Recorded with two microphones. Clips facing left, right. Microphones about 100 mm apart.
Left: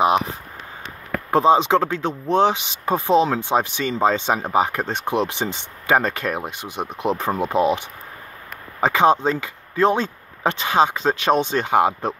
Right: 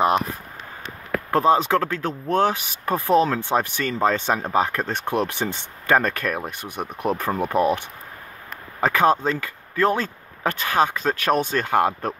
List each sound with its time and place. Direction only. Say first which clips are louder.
1.3 s speech: left 3 dB; 20° left (ahead or behind)
8.8 s speech: left 2 dB; 20° left (ahead or behind)